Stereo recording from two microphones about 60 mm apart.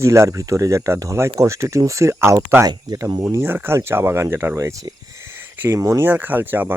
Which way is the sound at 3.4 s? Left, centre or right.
Right.